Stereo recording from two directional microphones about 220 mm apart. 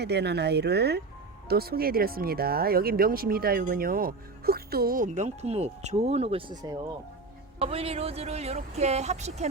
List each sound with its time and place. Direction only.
0.0 s speech: 50° right (ahead or behind); by 9.5 s 30° right (ahead or behind)